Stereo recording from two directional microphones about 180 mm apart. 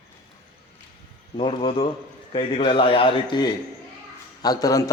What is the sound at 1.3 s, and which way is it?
A man's voice, 30° left (ahead or behind).